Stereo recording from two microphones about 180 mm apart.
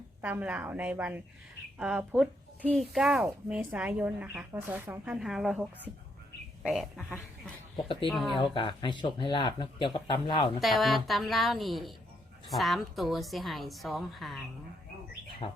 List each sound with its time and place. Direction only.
0.2 s a woman's voice: 10° right (ahead or behind)
6.6 s sheep: centre (ahead or behind)
8.0 s a woman's voice: centre (ahead or behind)
8.5 s speech: 25° left (ahead or behind)
10.6 s a woman's voice: centre (ahead or behind)
15.4 s speech: 30° left (ahead or behind)